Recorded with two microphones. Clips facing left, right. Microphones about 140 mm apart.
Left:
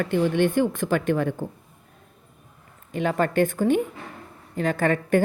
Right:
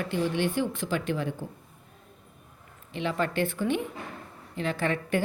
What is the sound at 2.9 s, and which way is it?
A woman's voice, 45° left (ahead or behind).